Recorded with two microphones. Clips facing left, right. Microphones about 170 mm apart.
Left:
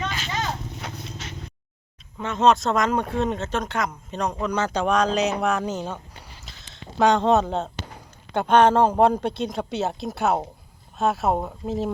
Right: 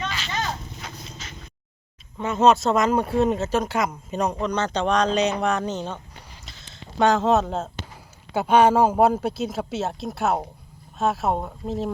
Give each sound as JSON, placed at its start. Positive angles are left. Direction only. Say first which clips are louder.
{"t": 0.8, "sound": "horse", "louder": "left 3 dB", "side_deg": 65}
{"t": 2.1, "sound": "speech", "louder": "right 1 dB", "side_deg": -5}
{"t": 7.0, "sound": "speech", "louder": "left 1 dB", "side_deg": 0}